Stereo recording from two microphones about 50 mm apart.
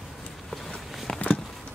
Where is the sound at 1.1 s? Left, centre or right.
Left.